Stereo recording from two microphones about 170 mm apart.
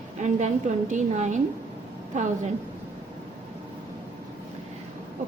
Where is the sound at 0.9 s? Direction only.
45° right (ahead or behind).